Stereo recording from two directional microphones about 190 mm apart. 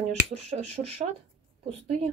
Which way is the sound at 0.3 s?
35° right (ahead or behind).